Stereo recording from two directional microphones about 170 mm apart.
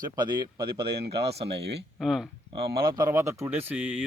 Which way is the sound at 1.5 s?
85° right.